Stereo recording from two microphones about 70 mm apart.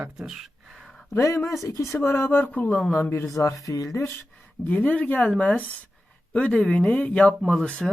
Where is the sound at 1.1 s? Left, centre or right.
Left.